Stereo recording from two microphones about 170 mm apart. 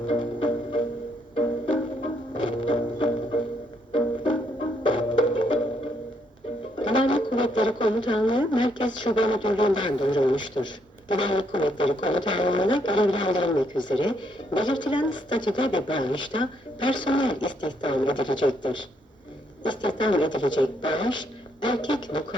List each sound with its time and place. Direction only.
0.1 s music: 30° left (ahead or behind)
6.7 s speech: 30° left (ahead or behind)